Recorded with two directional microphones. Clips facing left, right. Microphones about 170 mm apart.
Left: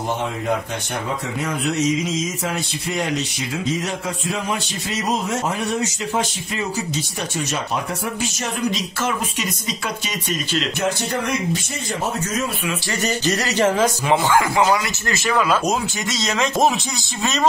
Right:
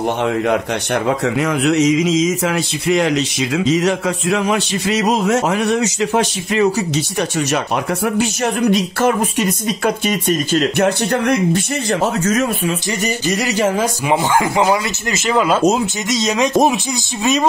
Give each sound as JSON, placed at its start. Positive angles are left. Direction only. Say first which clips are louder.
{"t": 1.0, "sound": "mantra", "louder": "right 9 dB", "side_deg": -85}
{"t": 7.5, "sound": "speech", "louder": "right 6 dB", "side_deg": -65}
{"t": 13.0, "sound": "speech", "louder": "right 1 dB", "side_deg": -10}